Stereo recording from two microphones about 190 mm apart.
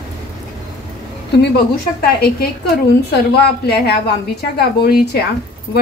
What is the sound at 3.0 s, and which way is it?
A woman's voice, 60° left (ahead or behind).